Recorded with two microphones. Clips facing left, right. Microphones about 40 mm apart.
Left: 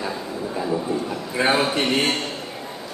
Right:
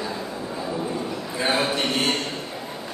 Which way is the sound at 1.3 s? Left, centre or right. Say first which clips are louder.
Left 3 dB; centre.